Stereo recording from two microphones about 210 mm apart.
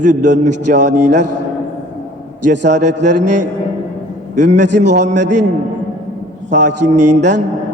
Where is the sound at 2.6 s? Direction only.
35° right (ahead or behind).